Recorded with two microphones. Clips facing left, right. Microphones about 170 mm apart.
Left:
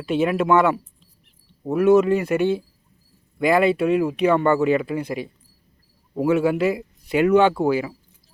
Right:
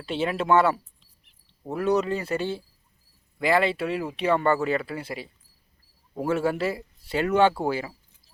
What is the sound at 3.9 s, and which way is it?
Speech, 30° right (ahead or behind).